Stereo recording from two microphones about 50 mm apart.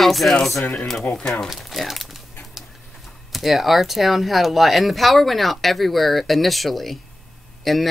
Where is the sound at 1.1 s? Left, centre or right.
Left.